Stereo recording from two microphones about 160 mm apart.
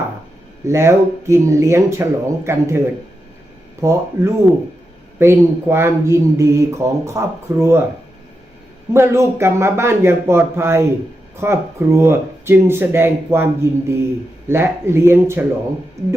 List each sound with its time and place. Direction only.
0.6 s speech: 15° right (ahead or behind)
8.9 s speech: 15° right (ahead or behind)